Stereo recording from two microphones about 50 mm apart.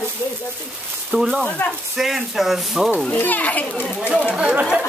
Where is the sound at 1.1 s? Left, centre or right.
Centre.